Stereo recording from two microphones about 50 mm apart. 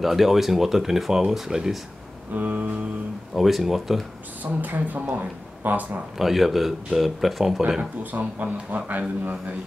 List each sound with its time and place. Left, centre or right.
0.0 s speech: centre
2.3 s speech: right
3.3 s speech: centre
4.6 s speech: right
6.1 s speech: centre
8.0 s speech: right